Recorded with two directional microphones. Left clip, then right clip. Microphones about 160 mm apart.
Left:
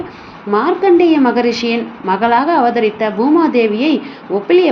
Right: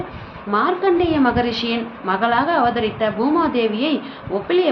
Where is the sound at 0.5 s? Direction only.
25° left (ahead or behind).